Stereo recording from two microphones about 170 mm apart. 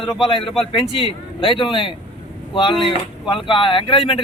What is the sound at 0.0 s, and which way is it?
Speech, 30° left (ahead or behind).